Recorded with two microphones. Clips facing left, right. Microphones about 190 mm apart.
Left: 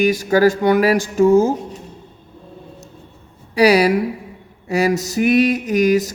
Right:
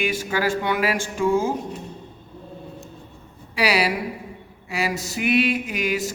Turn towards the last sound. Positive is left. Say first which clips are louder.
# left 10 dB
turn(degrees=40)  # may be behind; listen again after turning